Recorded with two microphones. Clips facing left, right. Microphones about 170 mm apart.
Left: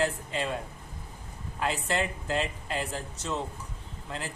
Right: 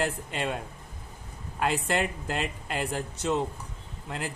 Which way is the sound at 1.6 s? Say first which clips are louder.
Right 2 dB; 60° right (ahead or behind).